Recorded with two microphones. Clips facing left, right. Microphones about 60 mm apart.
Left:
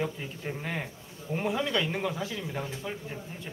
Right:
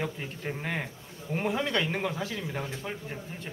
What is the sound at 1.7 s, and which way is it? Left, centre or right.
A man's voice, right.